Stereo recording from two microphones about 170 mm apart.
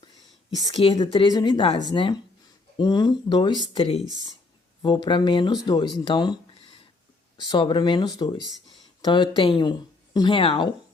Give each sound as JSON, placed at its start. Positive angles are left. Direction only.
{"t": 0.7, "sound": "speech", "side_deg": 30}
{"t": 7.3, "sound": "speech", "side_deg": 30}